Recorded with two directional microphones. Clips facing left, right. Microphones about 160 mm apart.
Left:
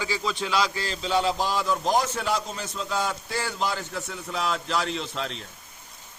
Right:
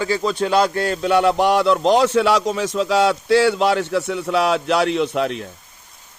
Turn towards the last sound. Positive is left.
turn(degrees=-60)  # may be behind; listen again after turning